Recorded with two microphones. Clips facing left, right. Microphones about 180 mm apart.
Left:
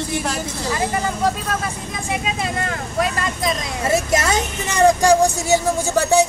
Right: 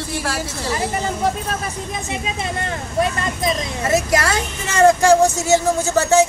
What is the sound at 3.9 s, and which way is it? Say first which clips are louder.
Speech: even; 25° left (ahead or behind).